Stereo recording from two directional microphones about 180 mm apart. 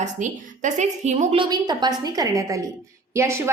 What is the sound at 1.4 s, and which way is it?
A woman's voice, 25° right (ahead or behind).